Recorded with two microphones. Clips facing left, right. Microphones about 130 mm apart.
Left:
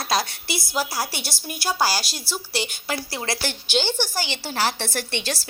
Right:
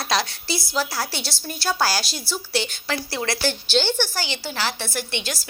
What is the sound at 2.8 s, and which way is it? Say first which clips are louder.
Speech: right 2 dB; 20° left (ahead or behind).